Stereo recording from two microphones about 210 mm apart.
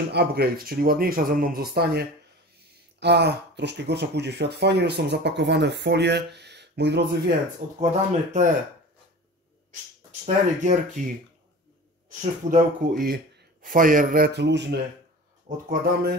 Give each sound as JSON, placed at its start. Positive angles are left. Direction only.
{"t": 0.1, "sound": "speech", "side_deg": -50}
{"t": 7.8, "sound": "speech", "side_deg": -35}
{"t": 10.2, "sound": "speech", "side_deg": -35}
{"t": 12.2, "sound": "speech", "side_deg": -40}
{"t": 15.4, "sound": "speech", "side_deg": -40}